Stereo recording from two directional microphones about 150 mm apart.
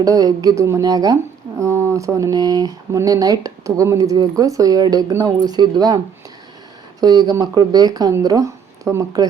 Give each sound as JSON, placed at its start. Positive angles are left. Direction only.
{"t": 0.0, "sound": "speech", "side_deg": -25}
{"t": 7.0, "sound": "speech", "side_deg": -25}